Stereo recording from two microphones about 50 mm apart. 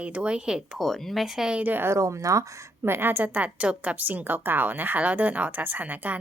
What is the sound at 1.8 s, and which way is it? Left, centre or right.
Speech, right.